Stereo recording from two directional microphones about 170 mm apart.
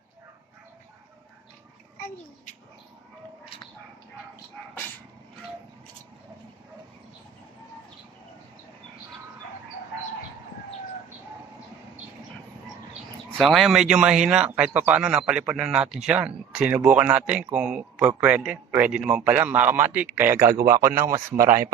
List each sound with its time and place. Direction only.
13.4 s a man's voice: centre (ahead or behind); by 21.7 s 15° right (ahead or behind)